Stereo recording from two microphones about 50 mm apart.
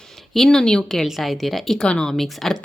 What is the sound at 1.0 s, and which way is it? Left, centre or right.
Speech, centre.